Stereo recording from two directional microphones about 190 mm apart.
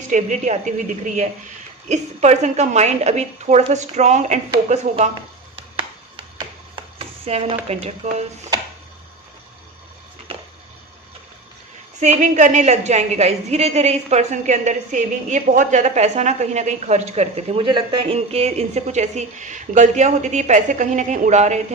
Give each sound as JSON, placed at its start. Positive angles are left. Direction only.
{"t": 0.1, "sound": "a woman's voice", "side_deg": -40}
{"t": 7.3, "sound": "a woman's voice", "side_deg": -35}
{"t": 10.3, "sound": "a sound", "side_deg": -30}
{"t": 11.9, "sound": "a woman's voice", "side_deg": -40}